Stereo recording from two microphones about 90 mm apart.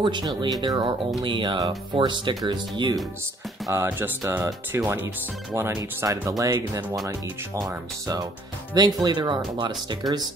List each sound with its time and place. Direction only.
0.0 s speech: 60° right (ahead or behind)
2.0 s speech: 65° right (ahead or behind)
3.6 s speech: 30° right (ahead or behind)
8.7 s speech: 55° right (ahead or behind)